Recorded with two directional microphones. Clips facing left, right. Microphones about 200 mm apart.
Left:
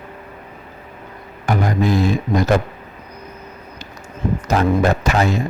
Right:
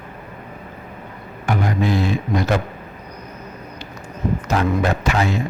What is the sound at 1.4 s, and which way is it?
A man's voice, 40° left (ahead or behind).